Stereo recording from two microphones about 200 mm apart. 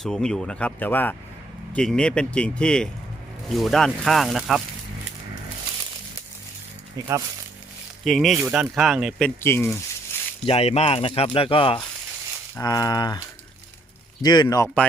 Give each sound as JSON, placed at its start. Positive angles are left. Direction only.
{"t": 0.0, "sound": "speech", "side_deg": 5}
{"t": 8.0, "sound": "speech", "side_deg": 0}
{"t": 10.4, "sound": "speech", "side_deg": 30}